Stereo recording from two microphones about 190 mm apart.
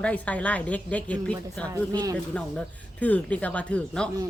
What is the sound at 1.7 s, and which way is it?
Speech, 20° right (ahead or behind).